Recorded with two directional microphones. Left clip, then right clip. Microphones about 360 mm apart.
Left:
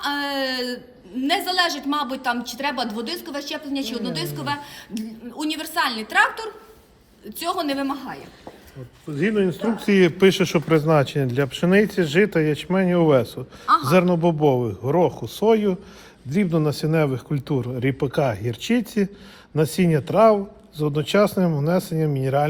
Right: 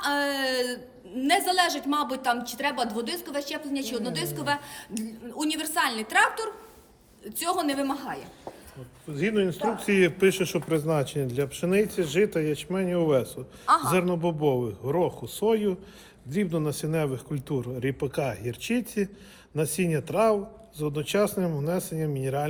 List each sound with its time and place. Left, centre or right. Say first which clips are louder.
0.0 s a sound: left 2 dB; centre
1.2 s speech: left 2 dB; centre
9.1 s speech: left 4 dB; left